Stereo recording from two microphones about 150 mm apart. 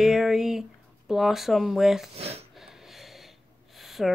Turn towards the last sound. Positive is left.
turn(degrees=0)  # may be behind; listen again after turning